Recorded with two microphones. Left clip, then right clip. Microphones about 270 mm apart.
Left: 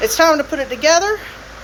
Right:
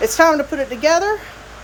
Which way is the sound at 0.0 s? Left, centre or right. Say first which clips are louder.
Even; centre.